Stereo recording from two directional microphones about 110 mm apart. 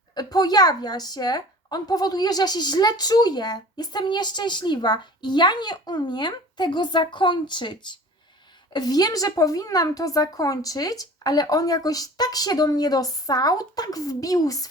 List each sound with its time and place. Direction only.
0.1 s a woman's voice: 35° left (ahead or behind)